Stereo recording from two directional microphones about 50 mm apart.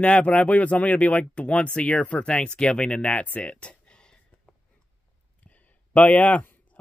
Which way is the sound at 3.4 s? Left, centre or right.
Left.